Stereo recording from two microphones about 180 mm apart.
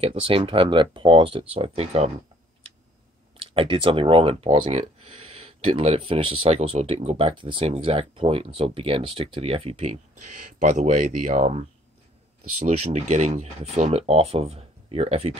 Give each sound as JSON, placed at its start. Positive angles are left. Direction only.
{"t": 0.0, "sound": "speech", "side_deg": -30}
{"t": 3.3, "sound": "speech", "side_deg": -30}
{"t": 10.6, "sound": "speech", "side_deg": -50}